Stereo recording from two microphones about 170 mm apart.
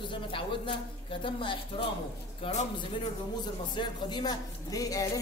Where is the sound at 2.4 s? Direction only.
45° left (ahead or behind).